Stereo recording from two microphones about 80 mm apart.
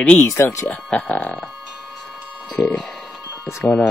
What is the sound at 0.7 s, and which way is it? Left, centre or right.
Speech, centre.